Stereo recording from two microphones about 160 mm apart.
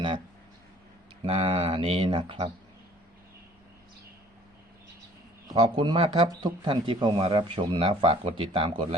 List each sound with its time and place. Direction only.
1.2 s speech: 35° right (ahead or behind)
5.5 s speech: 40° right (ahead or behind)